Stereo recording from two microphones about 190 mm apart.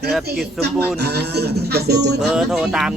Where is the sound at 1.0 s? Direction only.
60° right (ahead or behind).